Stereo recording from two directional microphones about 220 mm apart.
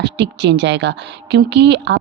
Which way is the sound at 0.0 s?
50° right (ahead or behind).